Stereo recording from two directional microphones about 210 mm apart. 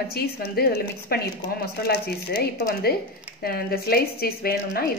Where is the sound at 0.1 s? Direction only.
50° left (ahead or behind).